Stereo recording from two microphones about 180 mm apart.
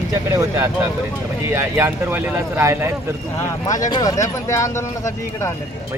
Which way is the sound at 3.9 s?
20° left (ahead or behind).